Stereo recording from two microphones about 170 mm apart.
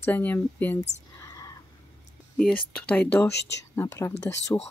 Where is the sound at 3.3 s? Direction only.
90° left.